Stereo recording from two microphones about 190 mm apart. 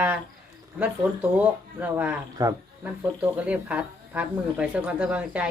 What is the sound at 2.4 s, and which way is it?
Speech, 20° right (ahead or behind).